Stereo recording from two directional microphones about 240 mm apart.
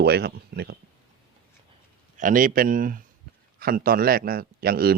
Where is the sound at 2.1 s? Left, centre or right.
Right.